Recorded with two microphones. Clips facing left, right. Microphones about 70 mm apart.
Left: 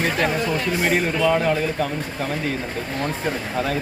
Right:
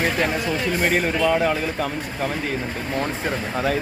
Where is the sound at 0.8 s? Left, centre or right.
Centre.